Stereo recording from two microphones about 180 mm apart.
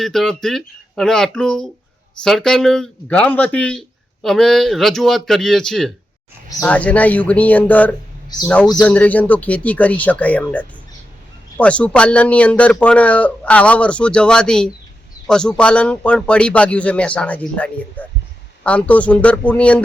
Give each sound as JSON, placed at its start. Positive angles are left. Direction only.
{"t": 0.0, "sound": "speech", "side_deg": 0}
{"t": 8.3, "sound": "a man's voice", "side_deg": 20}
{"t": 8.8, "sound": "speech", "side_deg": 10}